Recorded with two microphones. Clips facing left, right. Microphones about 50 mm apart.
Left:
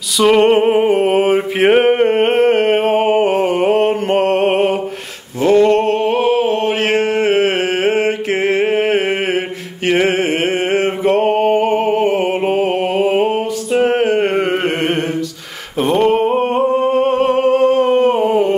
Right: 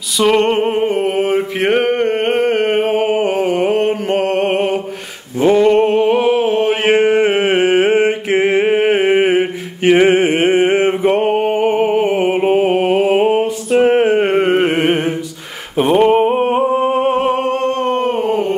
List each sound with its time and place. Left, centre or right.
0.2 s music: centre
5.4 s a sound: centre
17.4 s humming: centre